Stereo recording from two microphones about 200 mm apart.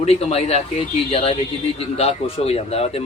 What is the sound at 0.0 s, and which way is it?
A man's voice, 30° left (ahead or behind).